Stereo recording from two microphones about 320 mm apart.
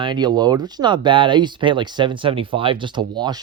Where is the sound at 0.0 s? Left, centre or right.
Centre.